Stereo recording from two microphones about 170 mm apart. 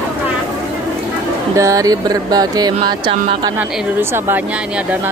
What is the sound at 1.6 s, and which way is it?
Speech, 20° right (ahead or behind).